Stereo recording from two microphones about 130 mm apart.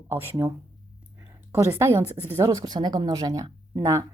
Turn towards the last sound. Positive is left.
turn(degrees=-30)  # may be behind; listen again after turning